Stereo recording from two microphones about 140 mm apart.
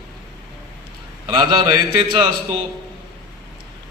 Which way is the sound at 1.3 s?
35° right (ahead or behind).